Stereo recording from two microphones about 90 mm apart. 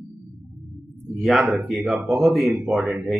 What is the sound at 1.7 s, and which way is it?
A man's voice, centre (ahead or behind).